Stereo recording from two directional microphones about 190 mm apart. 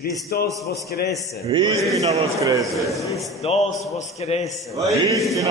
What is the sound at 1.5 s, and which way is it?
Speech, 20° right (ahead or behind).